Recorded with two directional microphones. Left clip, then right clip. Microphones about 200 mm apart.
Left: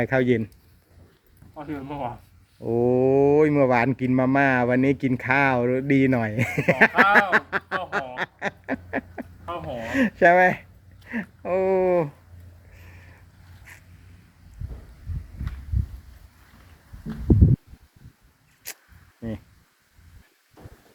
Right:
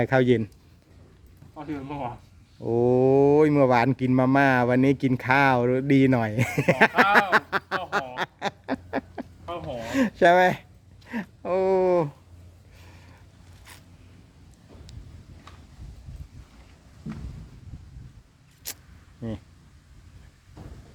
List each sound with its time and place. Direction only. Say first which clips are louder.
0.0 s speech: right 1 dB; 25° right (ahead or behind)
1.5 s speech: left 1 dB; 5° left (ahead or behind)
2.6 s speech: even; 20° right (ahead or behind)
8.1 s duck: left 1 dB; 20° right (ahead or behind)
9.5 s gasp: left 2 dB; 5° right (ahead or behind)
10.2 s speech: left 1 dB; 20° right (ahead or behind)
18.6 s zipper: even; 20° right (ahead or behind)